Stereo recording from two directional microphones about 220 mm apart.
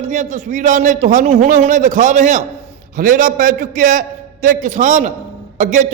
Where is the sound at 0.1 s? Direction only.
35° right (ahead or behind).